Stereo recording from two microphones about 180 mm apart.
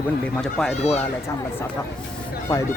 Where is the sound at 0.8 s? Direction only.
35° left (ahead or behind).